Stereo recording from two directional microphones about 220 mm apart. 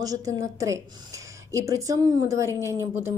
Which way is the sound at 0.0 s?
15° right (ahead or behind).